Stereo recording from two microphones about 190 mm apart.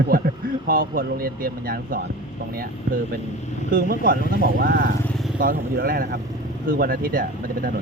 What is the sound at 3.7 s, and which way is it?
Speech, 50° right (ahead or behind).